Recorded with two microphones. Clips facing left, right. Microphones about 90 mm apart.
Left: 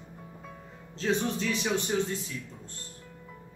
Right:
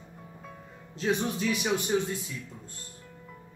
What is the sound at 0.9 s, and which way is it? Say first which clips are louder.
Speech: even; 10° right (ahead or behind).